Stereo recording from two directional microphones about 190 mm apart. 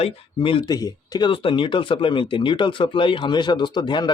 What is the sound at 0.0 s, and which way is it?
Speech, 30° left (ahead or behind).